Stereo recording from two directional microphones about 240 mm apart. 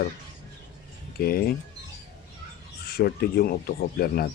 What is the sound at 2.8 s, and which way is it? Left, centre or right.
Speech, left.